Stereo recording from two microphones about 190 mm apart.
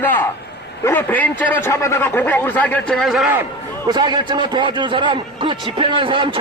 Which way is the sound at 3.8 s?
20° right (ahead or behind).